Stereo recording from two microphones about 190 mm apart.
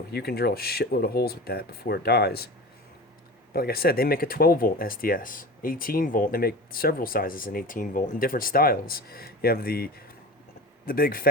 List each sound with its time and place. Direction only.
0.1 s speech: 55° left (ahead or behind)
3.5 s speech: 55° left (ahead or behind)